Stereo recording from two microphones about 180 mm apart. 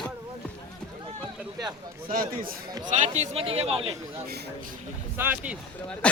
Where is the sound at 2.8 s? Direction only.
40° right (ahead or behind).